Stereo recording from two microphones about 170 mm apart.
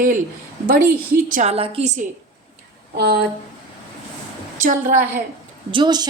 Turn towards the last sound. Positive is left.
turn(degrees=-25)  # may be behind; listen again after turning